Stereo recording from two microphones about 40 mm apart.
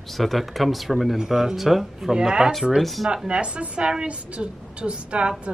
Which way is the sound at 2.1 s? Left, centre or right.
Centre.